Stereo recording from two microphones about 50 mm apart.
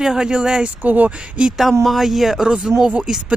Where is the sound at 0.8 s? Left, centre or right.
Right.